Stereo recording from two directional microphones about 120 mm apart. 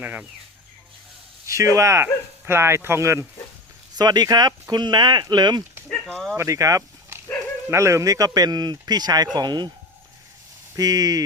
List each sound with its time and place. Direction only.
0.0 s speech: 10° right (ahead or behind)
1.5 s speech: 25° right (ahead or behind)
3.9 s speech: 35° right (ahead or behind)
5.9 s speech: 10° left (ahead or behind)
6.3 s speech: 25° right (ahead or behind)
10.8 s speech: 30° right (ahead or behind)